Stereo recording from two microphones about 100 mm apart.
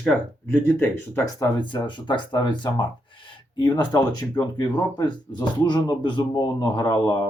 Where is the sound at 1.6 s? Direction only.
50° left (ahead or behind).